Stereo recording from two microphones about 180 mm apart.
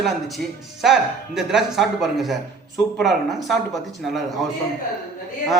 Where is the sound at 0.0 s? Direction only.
Centre (ahead or behind).